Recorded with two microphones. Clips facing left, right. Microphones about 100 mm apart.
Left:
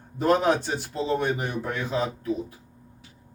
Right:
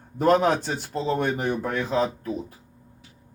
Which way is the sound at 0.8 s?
45° right (ahead or behind).